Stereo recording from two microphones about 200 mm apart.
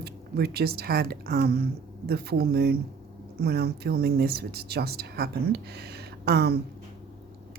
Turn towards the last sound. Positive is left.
turn(degrees=-55)  # may be behind; listen again after turning